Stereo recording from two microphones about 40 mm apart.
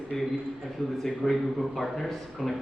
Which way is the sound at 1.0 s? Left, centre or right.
Centre.